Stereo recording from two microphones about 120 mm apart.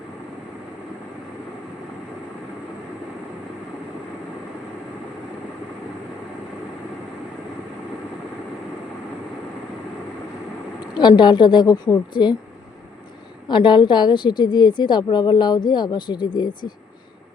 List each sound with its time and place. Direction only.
11.2 s a woman's voice: 40° left (ahead or behind)
13.5 s a woman's voice: 40° left (ahead or behind)